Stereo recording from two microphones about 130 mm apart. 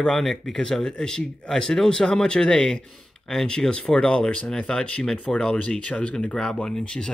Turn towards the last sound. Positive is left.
turn(degrees=5)  # may be behind; listen again after turning